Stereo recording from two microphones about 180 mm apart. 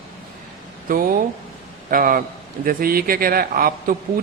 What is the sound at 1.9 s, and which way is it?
Speech, 50° right (ahead or behind).